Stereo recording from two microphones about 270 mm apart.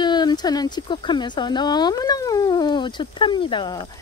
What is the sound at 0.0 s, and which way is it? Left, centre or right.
Speech, centre.